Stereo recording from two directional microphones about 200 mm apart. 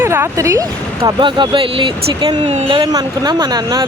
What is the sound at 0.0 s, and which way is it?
Speech, 10° right (ahead or behind).